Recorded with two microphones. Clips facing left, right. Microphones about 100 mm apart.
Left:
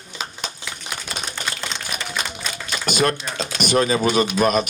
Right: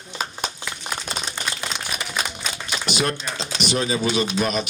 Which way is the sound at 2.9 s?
50° left (ahead or behind).